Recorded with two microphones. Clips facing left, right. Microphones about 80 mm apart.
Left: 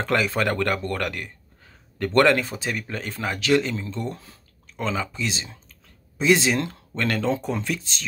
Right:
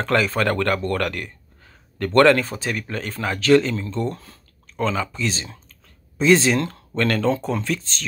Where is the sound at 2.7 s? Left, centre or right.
Right.